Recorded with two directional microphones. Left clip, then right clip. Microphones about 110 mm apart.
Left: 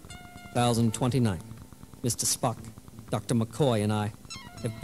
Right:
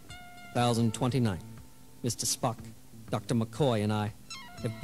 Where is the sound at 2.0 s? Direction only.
75° left (ahead or behind).